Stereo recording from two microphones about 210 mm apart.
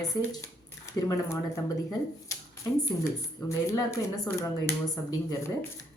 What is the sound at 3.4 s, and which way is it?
Speech, 15° left (ahead or behind).